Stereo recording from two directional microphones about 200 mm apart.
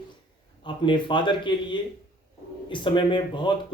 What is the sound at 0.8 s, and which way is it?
Speech, 25° left (ahead or behind).